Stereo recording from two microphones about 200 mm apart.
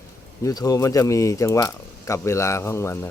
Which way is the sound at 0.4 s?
15° left (ahead or behind).